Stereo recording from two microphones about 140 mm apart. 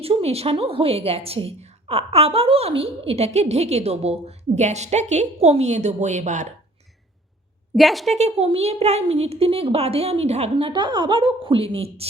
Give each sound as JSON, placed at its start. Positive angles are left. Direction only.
{"t": 0.0, "sound": "a woman's voice", "side_deg": -45}
{"t": 7.8, "sound": "a woman's voice", "side_deg": 0}
{"t": 8.1, "sound": "a woman's voice", "side_deg": -50}
{"t": 10.7, "sound": "a woman's voice", "side_deg": -35}